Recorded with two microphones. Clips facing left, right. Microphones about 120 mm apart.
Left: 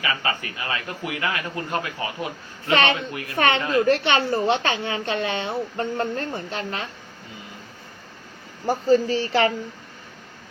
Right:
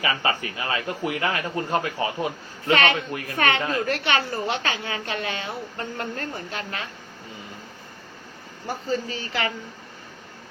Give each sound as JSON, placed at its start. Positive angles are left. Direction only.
{"t": 0.0, "sound": "a man's voice", "side_deg": -30}
{"t": 2.7, "sound": "speech", "side_deg": 25}
{"t": 8.6, "sound": "speech", "side_deg": 40}